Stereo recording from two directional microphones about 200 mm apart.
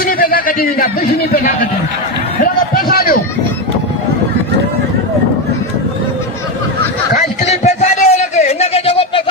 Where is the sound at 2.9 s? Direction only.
50° left (ahead or behind).